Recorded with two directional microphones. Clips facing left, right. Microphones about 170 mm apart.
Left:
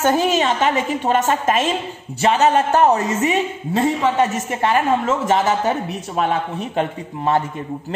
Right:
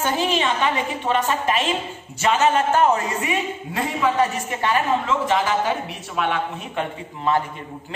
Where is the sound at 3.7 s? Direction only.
25° left (ahead or behind).